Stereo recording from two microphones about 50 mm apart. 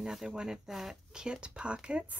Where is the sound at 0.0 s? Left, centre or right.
Centre.